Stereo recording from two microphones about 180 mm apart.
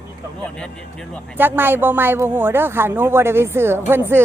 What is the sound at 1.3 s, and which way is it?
A woman's voice, 10° right (ahead or behind).